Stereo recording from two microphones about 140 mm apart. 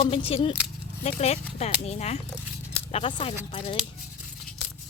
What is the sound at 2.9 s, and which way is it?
Speech, 35° left (ahead or behind).